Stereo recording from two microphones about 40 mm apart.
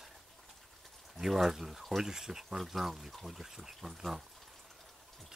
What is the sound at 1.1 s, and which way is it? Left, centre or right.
Speech, centre.